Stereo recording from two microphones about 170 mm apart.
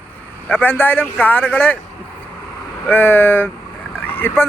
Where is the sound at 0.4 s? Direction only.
10° left (ahead or behind).